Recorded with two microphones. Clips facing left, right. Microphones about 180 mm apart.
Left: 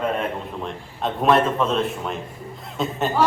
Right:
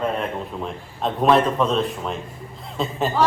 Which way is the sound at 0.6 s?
Centre (ahead or behind).